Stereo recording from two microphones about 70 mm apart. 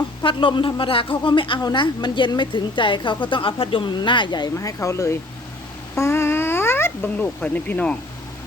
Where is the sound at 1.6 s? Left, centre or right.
Left.